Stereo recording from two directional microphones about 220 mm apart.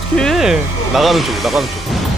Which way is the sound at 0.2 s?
Centre (ahead or behind).